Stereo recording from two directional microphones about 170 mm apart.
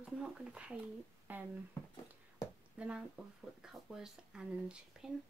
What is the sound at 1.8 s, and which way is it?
Speech, 15° left (ahead or behind).